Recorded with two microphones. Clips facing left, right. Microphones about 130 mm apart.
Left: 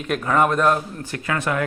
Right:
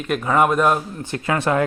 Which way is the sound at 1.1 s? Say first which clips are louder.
Right 4 dB; 25° right (ahead or behind).